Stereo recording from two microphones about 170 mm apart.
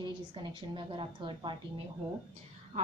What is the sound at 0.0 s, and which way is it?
A woman's voice, 30° right (ahead or behind).